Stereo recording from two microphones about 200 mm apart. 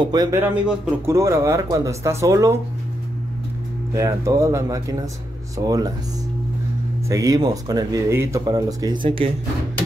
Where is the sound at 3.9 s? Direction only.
15° right (ahead or behind).